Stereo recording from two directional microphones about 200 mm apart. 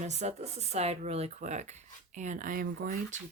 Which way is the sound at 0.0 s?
35° right (ahead or behind).